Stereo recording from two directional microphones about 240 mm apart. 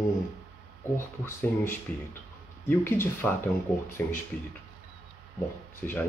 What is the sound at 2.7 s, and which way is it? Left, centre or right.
Speech, centre.